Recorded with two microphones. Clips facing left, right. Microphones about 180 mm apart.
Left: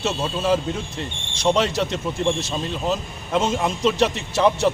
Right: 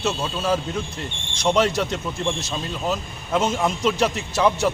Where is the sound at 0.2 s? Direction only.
5° left (ahead or behind).